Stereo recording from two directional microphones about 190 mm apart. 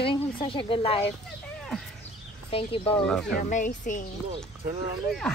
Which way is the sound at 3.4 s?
45° left (ahead or behind).